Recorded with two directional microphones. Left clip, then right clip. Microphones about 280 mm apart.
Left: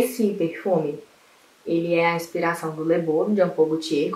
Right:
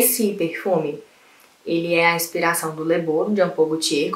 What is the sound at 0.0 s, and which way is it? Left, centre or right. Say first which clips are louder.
Speech: right 2 dB; centre.